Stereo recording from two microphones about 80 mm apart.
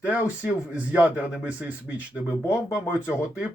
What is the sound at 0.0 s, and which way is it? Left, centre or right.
Speech, centre.